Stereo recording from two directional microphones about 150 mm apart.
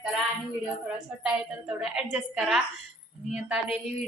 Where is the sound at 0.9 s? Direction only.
5° right (ahead or behind).